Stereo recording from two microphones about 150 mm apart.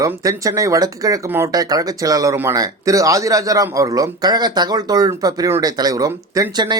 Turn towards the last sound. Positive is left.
turn(degrees=-25)  # may be behind; listen again after turning